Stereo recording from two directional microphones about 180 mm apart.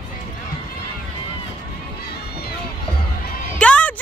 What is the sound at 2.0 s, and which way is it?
Run, 60° left (ahead or behind).